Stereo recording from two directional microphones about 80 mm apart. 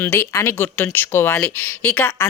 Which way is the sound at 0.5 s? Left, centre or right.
Left.